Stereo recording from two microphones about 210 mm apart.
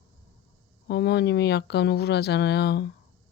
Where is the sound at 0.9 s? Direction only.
55° left (ahead or behind).